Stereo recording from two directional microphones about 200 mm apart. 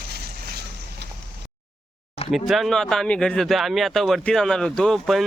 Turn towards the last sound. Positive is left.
turn(degrees=0)  # may be behind; listen again after turning